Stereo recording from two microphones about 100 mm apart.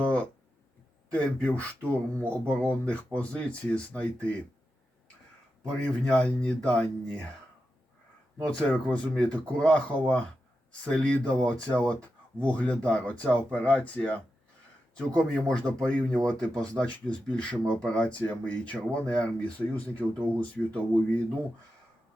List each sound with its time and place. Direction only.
0.0 s a sound: 10° left (ahead or behind)
1.1 s speech: 10° left (ahead or behind)
5.6 s speech: 10° left (ahead or behind)
8.4 s speech: 10° left (ahead or behind)